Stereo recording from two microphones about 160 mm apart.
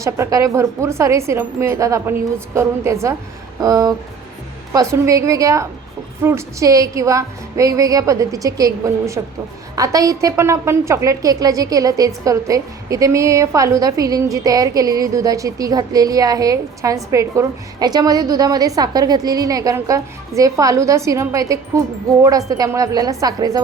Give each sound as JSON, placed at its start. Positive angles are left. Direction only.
{"t": 0.0, "sound": "a woman's voice", "side_deg": -20}